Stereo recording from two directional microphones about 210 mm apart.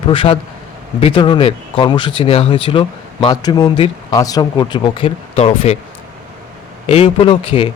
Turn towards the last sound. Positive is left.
turn(degrees=25)  # may be behind; listen again after turning